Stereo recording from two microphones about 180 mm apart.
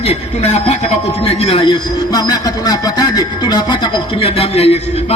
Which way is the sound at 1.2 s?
30° left (ahead or behind).